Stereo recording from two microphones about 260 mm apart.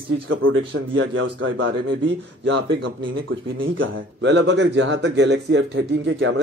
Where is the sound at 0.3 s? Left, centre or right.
Right.